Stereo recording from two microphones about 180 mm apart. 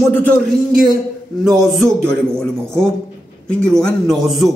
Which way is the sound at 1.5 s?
Centre (ahead or behind).